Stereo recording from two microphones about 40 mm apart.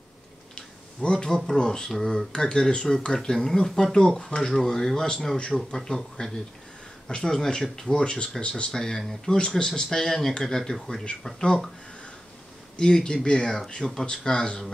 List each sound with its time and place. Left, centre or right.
1.0 s speech: left
5.5 s speech: centre
5.9 s speech: centre
7.9 s speech: left
8.7 s speech: centre
12.7 s speech: centre